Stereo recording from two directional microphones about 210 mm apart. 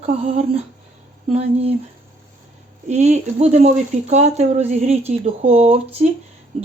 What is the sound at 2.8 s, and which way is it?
Speech, 35° right (ahead or behind).